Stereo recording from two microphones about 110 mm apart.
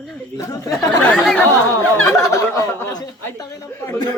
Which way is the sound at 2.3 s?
30° left (ahead or behind).